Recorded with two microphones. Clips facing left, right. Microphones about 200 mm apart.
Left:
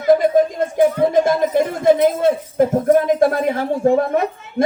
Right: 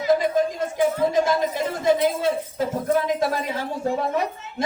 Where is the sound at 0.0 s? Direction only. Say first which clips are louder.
Left 6 dB; 50° left (ahead or behind).